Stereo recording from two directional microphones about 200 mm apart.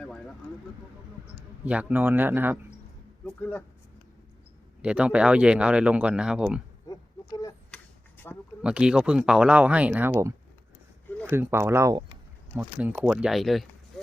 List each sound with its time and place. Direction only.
0.0 s vehicle: 5° left (ahead or behind)
1.6 s speech: 5° right (ahead or behind)
3.2 s speech: 10° left (ahead or behind)
4.8 s speech: 5° right (ahead or behind)
6.8 s a sound: 20° left (ahead or behind)
8.2 s speech: 10° left (ahead or behind)
8.6 s speech: 5° right (ahead or behind)